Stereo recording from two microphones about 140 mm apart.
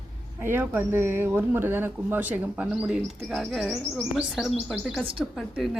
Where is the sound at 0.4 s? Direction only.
15° right (ahead or behind).